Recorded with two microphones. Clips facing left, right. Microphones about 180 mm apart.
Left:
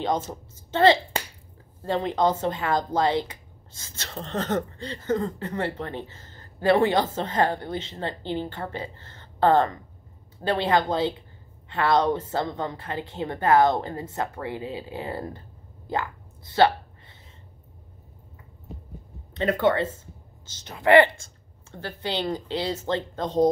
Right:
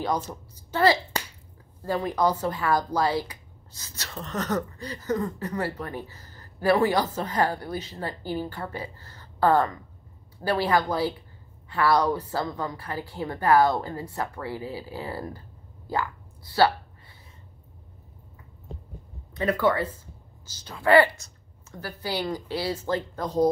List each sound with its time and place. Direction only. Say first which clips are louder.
0.3 s a child's voice: left 2 dB; 25° left (ahead or behind)
19.3 s speech: left 1 dB; 25° left (ahead or behind)